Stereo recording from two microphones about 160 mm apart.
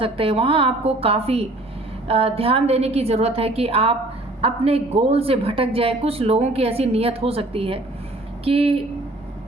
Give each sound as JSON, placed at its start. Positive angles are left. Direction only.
{"t": 0.0, "sound": "a woman's voice", "side_deg": -35}